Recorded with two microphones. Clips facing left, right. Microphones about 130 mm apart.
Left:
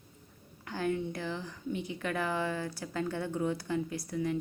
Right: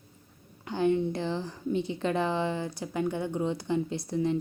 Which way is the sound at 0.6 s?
20° right (ahead or behind).